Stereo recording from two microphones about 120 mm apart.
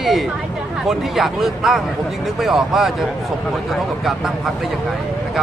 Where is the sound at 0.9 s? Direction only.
Centre (ahead or behind).